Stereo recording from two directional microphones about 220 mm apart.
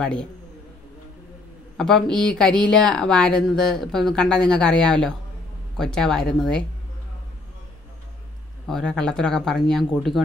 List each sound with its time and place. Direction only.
0.0 s speech: 5° left (ahead or behind)
1.8 s speech: centre (ahead or behind)
8.6 s speech: 5° left (ahead or behind)